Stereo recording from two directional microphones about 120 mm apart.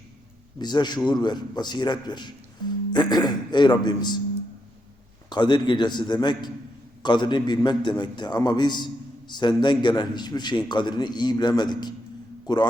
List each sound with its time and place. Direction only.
0.6 s a man's voice: 35° left (ahead or behind)
5.3 s a man's voice: 40° left (ahead or behind)